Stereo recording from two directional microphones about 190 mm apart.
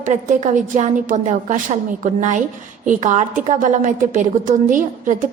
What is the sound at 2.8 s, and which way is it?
A woman's voice, 40° right (ahead or behind).